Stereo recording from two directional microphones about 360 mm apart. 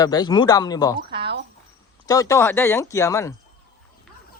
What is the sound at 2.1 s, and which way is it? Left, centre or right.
Speech, centre.